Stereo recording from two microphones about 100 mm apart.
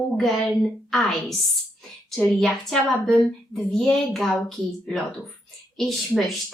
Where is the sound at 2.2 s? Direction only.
5° left (ahead or behind).